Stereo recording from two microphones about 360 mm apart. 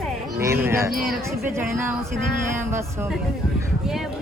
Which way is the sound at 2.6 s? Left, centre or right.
Centre.